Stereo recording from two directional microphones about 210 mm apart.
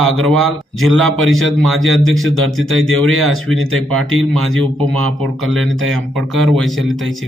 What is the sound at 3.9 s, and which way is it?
Speech, 75° right (ahead or behind).